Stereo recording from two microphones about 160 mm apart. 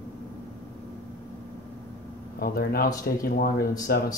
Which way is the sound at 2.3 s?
70° left (ahead or behind).